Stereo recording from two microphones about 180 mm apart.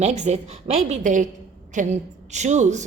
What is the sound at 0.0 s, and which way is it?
A woman's voice, 40° right (ahead or behind).